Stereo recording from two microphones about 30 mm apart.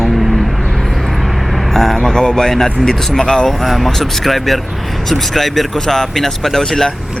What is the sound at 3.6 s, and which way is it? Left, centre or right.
Speech, centre.